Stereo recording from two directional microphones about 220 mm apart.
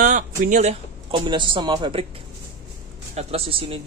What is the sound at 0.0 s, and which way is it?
Speech, 35° right (ahead or behind).